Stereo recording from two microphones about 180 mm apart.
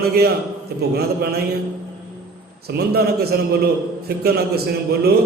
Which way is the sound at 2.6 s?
60° right (ahead or behind).